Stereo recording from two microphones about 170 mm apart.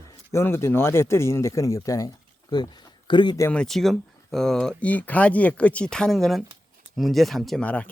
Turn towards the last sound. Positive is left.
turn(degrees=10)  # may be behind; listen again after turning